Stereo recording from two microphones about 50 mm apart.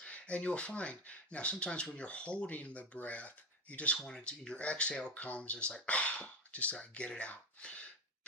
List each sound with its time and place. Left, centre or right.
0.0 s speech: left
3.9 s speech: centre